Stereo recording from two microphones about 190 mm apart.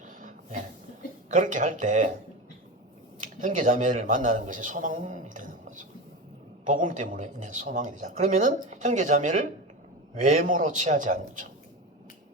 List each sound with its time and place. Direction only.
0.0 s a sound: 45° right (ahead or behind)
1.3 s speech: 40° right (ahead or behind)
3.2 s a man's voice: 45° right (ahead or behind)